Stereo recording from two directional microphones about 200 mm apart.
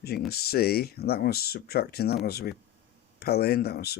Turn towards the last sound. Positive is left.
turn(degrees=50)  # may be behind; listen again after turning